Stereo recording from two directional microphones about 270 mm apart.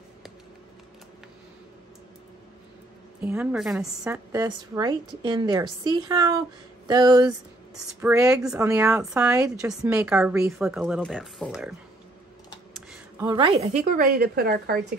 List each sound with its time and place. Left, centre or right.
3.2 s a woman's voice: centre
13.2 s a woman's voice: centre; by 14.8 s right